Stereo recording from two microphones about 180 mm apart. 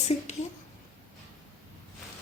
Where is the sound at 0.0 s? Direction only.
40° left (ahead or behind).